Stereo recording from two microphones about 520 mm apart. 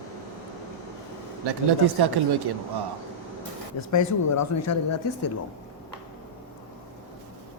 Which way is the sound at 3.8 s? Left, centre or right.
Left.